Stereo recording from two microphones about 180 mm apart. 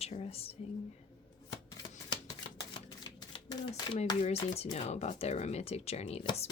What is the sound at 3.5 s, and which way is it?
Speech, 25° left (ahead or behind).